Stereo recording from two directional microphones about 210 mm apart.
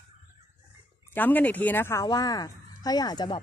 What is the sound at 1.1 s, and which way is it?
A woman's voice, 10° left (ahead or behind).